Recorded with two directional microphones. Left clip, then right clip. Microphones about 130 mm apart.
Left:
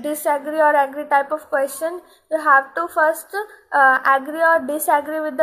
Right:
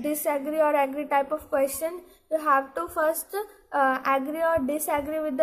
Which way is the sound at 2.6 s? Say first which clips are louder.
Left 8 dB; 25° right (ahead or behind).